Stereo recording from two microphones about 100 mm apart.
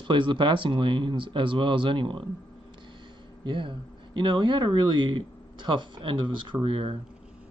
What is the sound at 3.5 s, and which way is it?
Speech, 55° right (ahead or behind).